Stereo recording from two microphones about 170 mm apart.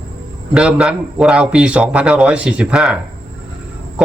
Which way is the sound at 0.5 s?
5° right (ahead or behind).